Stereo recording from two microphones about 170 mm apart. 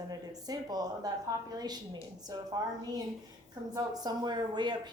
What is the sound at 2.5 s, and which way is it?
Speech, 20° right (ahead or behind).